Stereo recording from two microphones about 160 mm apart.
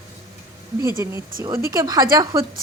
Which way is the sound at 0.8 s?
20° right (ahead or behind).